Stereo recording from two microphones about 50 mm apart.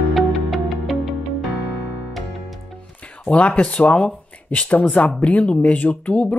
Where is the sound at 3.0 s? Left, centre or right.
Left.